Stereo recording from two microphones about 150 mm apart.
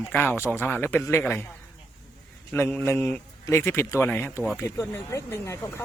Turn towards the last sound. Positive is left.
turn(degrees=20)  # may be behind; listen again after turning